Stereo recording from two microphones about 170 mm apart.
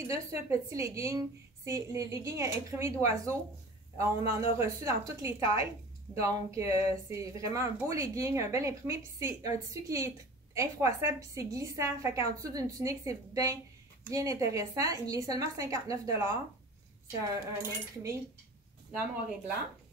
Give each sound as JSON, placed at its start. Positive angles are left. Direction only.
{"t": 0.1, "sound": "a woman's voice", "side_deg": -15}
{"t": 6.7, "sound": "a sound", "side_deg": 40}
{"t": 7.1, "sound": "a woman's voice", "side_deg": -20}